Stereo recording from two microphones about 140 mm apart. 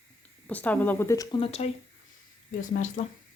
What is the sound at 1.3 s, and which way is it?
Speech, 40° left (ahead or behind).